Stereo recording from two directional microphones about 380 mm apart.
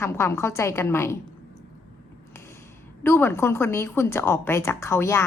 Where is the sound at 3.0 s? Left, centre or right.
Centre.